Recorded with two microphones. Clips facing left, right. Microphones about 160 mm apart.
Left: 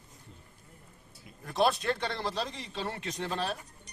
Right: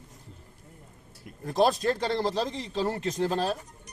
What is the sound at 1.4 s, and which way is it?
A man's voice, 35° right (ahead or behind).